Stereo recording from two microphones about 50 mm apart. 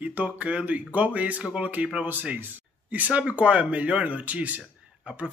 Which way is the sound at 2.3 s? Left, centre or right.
Right.